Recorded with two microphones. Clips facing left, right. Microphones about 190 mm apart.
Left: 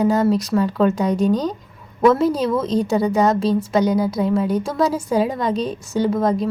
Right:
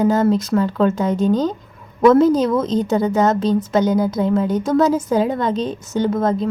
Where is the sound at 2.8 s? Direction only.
10° left (ahead or behind).